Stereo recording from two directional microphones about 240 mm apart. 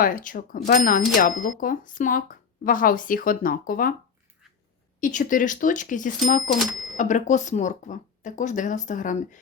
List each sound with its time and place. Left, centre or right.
0.0 s speech: left
4.9 s speech: left
6.6 s speech: centre
6.9 s speech: left